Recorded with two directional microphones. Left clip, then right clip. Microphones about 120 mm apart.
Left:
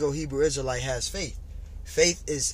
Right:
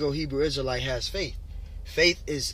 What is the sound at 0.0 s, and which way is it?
Speech, 45° left (ahead or behind).